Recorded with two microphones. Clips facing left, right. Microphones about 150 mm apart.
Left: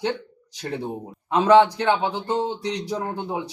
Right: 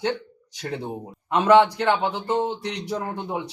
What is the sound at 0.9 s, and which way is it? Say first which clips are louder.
Speech: left 1 dB; centre (ahead or behind).